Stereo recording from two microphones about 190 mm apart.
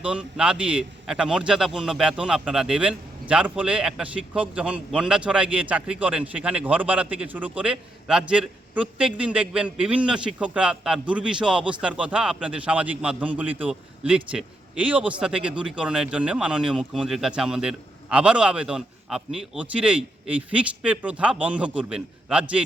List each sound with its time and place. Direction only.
0.0 s a man's voice: 5° right (ahead or behind)